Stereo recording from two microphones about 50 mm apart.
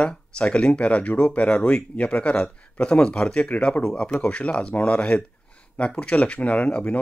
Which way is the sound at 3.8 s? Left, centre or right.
Centre.